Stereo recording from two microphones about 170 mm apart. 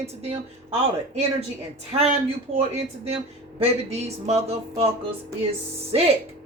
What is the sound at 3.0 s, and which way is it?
Speech, 35° right (ahead or behind).